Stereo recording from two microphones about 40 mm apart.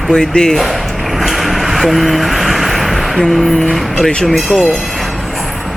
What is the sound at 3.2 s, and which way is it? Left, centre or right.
Speech, centre.